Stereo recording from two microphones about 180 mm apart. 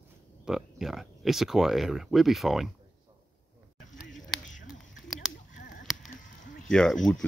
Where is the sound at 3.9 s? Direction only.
Centre (ahead or behind).